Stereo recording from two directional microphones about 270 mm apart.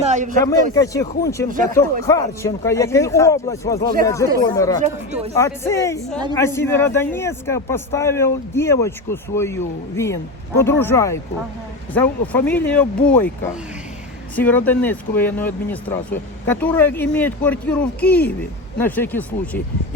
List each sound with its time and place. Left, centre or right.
0.0 s speech: right
0.4 s speech: centre